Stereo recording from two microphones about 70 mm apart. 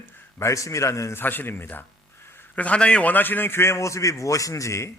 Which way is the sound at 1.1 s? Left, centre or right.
Left.